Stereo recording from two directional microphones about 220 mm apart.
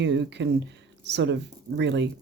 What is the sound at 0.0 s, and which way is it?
A woman's voice, 55° right (ahead or behind).